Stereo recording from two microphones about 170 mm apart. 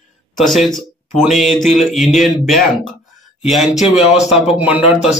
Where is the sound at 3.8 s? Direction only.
35° left (ahead or behind).